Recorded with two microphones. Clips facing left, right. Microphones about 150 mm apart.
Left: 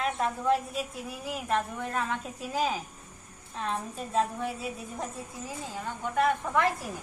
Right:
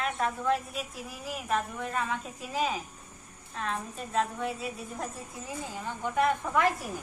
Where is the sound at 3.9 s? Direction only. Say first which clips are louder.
Left 2 dB; centre (ahead or behind).